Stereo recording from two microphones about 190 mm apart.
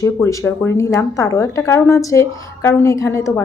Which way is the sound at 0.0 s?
15° left (ahead or behind).